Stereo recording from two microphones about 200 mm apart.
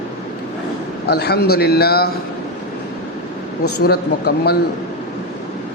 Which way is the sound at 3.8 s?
50° left (ahead or behind).